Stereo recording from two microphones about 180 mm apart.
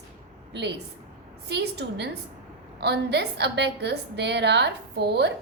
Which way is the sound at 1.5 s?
70° right (ahead or behind).